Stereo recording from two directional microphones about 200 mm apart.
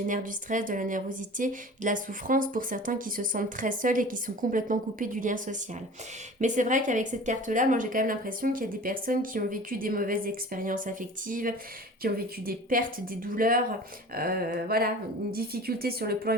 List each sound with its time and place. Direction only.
0.1 s a woman's voice: 40° right (ahead or behind)